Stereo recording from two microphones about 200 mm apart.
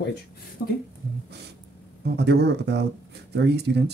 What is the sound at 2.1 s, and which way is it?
Speech, 55° right (ahead or behind).